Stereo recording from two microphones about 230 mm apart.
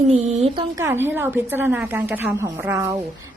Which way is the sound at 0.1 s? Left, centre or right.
Right.